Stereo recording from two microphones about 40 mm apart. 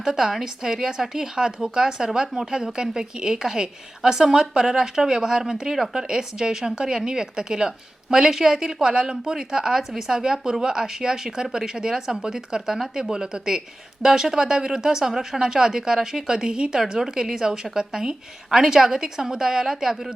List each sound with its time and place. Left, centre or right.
0.0 s speech: centre